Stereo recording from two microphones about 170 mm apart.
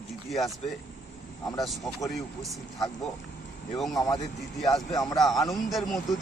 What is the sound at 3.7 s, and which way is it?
Speech, centre (ahead or behind).